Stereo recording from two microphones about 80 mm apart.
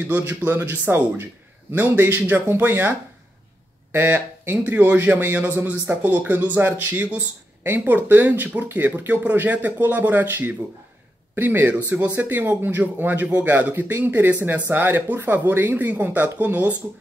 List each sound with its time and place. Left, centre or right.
0.0 s a man's voice: centre